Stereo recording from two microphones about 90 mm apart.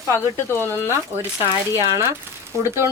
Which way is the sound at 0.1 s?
25° left (ahead or behind).